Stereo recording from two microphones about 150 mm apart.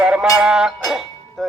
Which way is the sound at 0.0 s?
10° right (ahead or behind).